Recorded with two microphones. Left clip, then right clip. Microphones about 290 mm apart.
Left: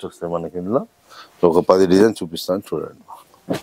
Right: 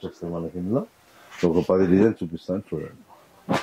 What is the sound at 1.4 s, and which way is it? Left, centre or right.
Speech, left.